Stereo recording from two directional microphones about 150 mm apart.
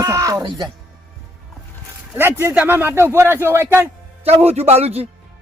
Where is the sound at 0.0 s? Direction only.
20° right (ahead or behind).